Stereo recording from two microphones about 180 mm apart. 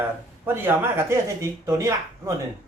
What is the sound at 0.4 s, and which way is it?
Speech, 10° right (ahead or behind).